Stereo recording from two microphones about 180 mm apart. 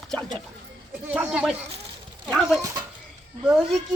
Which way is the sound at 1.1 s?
5° right (ahead or behind).